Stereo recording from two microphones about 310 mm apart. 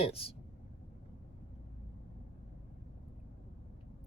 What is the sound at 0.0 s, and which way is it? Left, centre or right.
Speech, centre.